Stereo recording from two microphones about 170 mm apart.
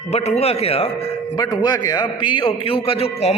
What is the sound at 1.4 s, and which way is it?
A man's voice, 25° left (ahead or behind).